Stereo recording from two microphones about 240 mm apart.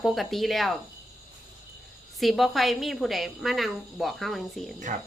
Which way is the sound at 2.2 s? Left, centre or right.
Centre.